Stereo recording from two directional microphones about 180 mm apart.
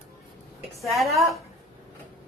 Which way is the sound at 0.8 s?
Centre (ahead or behind).